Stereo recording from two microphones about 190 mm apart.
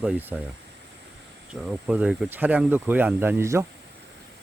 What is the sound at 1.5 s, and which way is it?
Speech, 5° right (ahead or behind).